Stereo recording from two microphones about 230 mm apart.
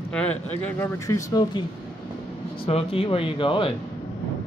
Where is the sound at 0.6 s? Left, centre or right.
Centre.